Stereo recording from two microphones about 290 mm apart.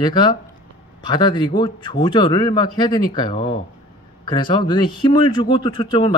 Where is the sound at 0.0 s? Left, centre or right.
Centre.